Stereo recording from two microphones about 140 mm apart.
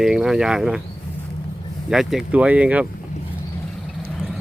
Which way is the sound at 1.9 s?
5° right (ahead or behind).